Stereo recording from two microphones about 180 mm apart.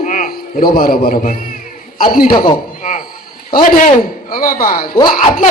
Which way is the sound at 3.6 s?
45° left (ahead or behind).